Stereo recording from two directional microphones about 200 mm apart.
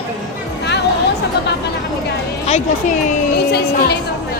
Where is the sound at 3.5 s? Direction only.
55° left (ahead or behind).